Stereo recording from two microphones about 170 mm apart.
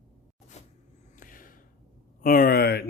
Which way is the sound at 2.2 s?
55° left (ahead or behind).